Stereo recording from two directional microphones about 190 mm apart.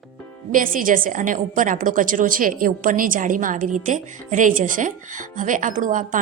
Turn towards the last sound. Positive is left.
turn(degrees=-45)  # may be behind; listen again after turning